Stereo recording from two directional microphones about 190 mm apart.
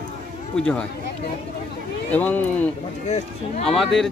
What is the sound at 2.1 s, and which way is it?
Speech, 5° left (ahead or behind).